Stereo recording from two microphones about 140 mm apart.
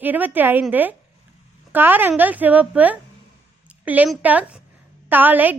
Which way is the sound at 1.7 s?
15° right (ahead or behind).